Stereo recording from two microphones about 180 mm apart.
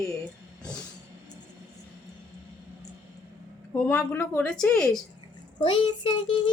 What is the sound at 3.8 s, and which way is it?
Speech, 10° left (ahead or behind).